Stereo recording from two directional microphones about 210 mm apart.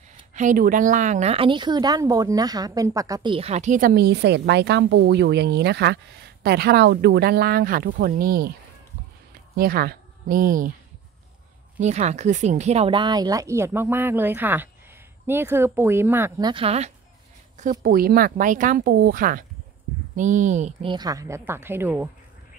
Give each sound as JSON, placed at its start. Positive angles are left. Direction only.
{"t": 0.3, "sound": "a woman's voice", "side_deg": -35}
{"t": 9.6, "sound": "speech", "side_deg": -45}
{"t": 11.8, "sound": "speech", "side_deg": -35}
{"t": 17.6, "sound": "a woman's voice", "side_deg": -40}
{"t": 20.9, "sound": "speech", "side_deg": -20}